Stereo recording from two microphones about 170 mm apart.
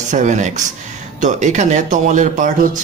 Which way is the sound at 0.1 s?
45° right (ahead or behind).